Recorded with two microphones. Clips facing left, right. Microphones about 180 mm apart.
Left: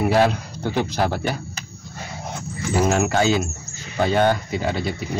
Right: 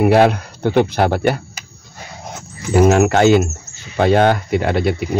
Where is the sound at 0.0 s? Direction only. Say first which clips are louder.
Right 6 dB; 60° right (ahead or behind).